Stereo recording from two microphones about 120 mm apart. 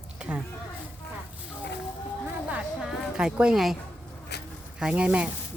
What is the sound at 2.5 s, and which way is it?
Speech, 5° right (ahead or behind).